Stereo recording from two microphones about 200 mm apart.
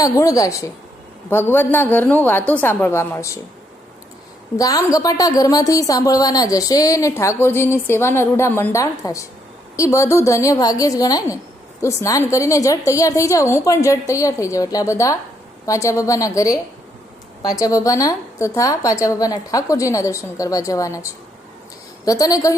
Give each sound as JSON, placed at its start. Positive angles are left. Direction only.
{"t": 0.0, "sound": "a woman's voice", "side_deg": 15}
{"t": 4.5, "sound": "a woman's voice", "side_deg": 15}